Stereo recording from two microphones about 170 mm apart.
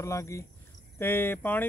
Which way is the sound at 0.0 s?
15° left (ahead or behind).